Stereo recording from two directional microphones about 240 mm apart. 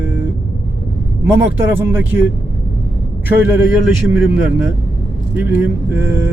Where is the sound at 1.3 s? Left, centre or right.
Centre.